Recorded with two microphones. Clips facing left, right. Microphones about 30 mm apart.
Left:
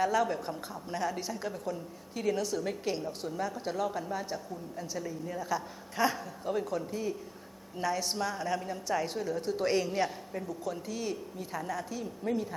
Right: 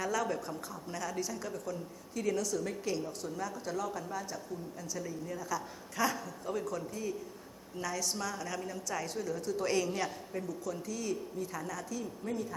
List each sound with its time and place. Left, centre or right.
0.0 s a woman's voice: left